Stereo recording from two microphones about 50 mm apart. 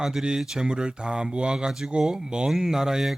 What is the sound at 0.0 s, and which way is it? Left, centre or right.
Speech, centre.